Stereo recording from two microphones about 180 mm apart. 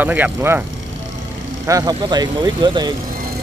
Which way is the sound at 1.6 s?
20° right (ahead or behind).